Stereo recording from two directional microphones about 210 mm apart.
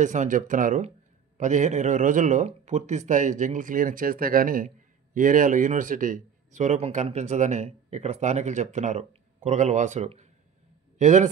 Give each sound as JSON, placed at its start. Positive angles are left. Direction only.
{"t": 0.0, "sound": "a man's voice", "side_deg": -35}